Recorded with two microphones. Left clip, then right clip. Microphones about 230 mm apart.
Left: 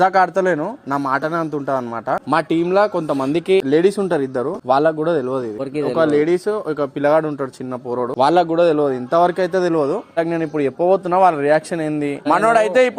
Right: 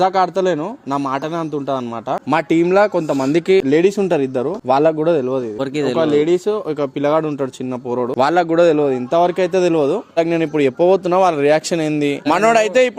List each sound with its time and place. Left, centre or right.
0.0 s speech: centre
2.3 s a man's voice: right
6.0 s speech: right
7.9 s a man's voice: right
10.2 s speech: right